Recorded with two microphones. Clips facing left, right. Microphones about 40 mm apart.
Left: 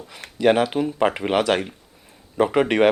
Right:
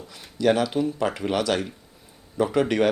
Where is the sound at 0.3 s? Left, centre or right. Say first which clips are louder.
Left 3 dB; left.